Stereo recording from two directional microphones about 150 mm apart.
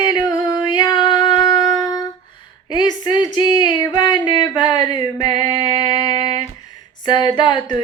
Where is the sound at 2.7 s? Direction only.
30° left (ahead or behind).